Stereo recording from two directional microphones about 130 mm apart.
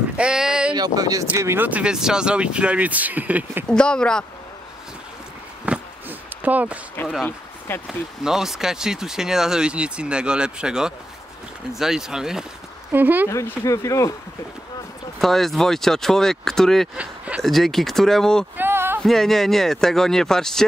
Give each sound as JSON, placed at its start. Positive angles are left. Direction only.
{"t": 0.2, "sound": "a sound", "side_deg": -5}
{"t": 0.7, "sound": "speech", "side_deg": -30}
{"t": 3.6, "sound": "speech", "side_deg": 5}
{"t": 5.7, "sound": "a sound", "side_deg": -10}
{"t": 7.2, "sound": "speech", "side_deg": 15}
{"t": 7.8, "sound": "speech", "side_deg": -5}
{"t": 13.3, "sound": "speech", "side_deg": 25}
{"t": 15.1, "sound": "speech", "side_deg": 0}
{"t": 16.9, "sound": "speech", "side_deg": -10}
{"t": 17.4, "sound": "speech", "side_deg": 0}
{"t": 18.6, "sound": "a sound", "side_deg": -15}
{"t": 19.0, "sound": "speech", "side_deg": 0}